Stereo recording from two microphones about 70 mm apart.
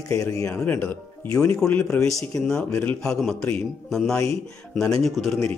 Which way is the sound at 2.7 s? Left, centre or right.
Left.